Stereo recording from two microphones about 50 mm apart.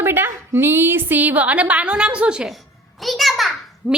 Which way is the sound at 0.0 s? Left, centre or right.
Right.